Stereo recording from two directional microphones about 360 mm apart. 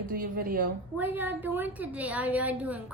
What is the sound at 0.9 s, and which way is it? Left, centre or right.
A woman's voice, centre.